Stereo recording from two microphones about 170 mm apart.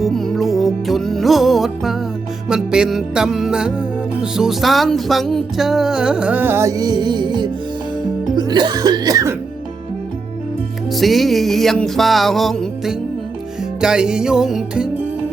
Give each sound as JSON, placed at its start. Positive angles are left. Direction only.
{"t": 0.0, "sound": "music", "side_deg": 0}
{"t": 10.9, "sound": "music", "side_deg": 0}